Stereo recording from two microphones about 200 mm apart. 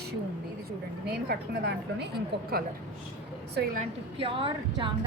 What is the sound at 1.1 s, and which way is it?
A woman's voice, 55° right (ahead or behind).